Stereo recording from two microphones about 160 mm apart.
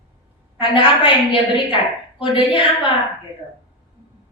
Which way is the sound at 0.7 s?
35° left (ahead or behind).